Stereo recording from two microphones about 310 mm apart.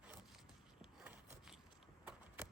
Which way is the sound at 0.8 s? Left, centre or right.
Centre.